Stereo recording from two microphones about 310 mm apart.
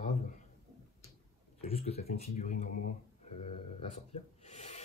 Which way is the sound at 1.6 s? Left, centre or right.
Centre.